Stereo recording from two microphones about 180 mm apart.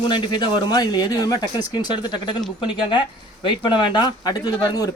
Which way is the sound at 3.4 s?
25° left (ahead or behind).